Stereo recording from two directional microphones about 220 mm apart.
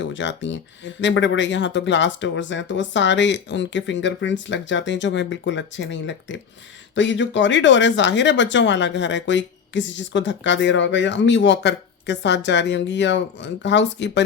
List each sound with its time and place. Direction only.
0.0 s speech: 55° left (ahead or behind)